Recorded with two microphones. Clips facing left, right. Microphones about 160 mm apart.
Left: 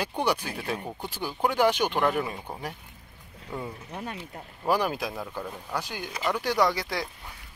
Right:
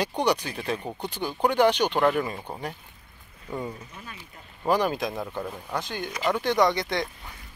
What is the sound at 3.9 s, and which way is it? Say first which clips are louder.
Speech: left 8 dB; 65° left (ahead or behind).